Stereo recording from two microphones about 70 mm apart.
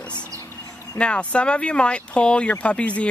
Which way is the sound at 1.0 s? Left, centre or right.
Centre.